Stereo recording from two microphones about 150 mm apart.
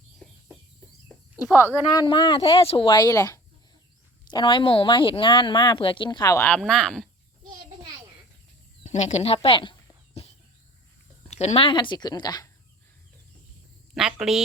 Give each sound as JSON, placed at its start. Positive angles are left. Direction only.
{"t": 1.9, "sound": "speech", "side_deg": 30}
{"t": 6.6, "sound": "speech", "side_deg": 5}
{"t": 8.8, "sound": "speech", "side_deg": 50}
{"t": 10.2, "sound": "cricket", "side_deg": 45}
{"t": 11.3, "sound": "speech", "side_deg": 45}
{"t": 13.9, "sound": "speech", "side_deg": 0}